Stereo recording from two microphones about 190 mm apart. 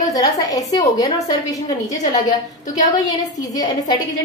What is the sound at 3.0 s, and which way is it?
A woman's voice, 20° left (ahead or behind).